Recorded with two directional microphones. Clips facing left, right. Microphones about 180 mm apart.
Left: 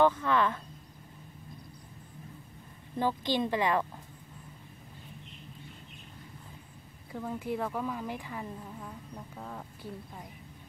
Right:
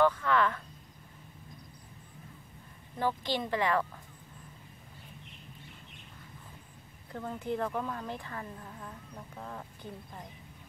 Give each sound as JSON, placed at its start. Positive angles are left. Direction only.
{"t": 0.0, "sound": "speech", "side_deg": 20}
{"t": 3.0, "sound": "speech", "side_deg": 20}
{"t": 7.1, "sound": "speech", "side_deg": 5}